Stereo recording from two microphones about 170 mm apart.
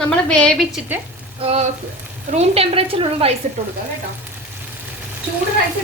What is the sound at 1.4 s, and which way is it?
Speech, 35° right (ahead or behind).